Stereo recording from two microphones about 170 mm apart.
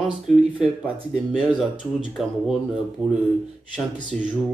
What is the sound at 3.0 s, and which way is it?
Speech, 5° right (ahead or behind).